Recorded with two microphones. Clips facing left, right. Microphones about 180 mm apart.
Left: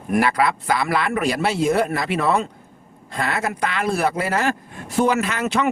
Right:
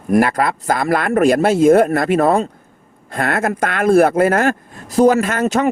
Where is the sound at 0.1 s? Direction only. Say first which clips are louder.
Right 4 dB; 45° right (ahead or behind).